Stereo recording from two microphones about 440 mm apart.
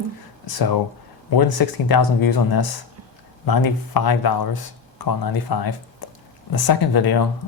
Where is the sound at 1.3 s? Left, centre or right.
Left.